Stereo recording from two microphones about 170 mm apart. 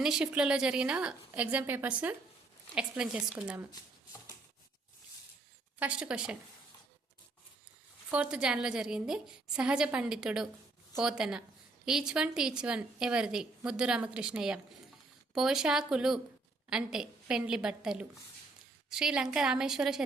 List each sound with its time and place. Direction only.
0.0 s a woman's voice: 5° right (ahead or behind)
3.7 s shuffling cards: 20° left (ahead or behind)
5.8 s a woman's voice: 5° right (ahead or behind)
8.1 s a woman's voice: 5° right (ahead or behind)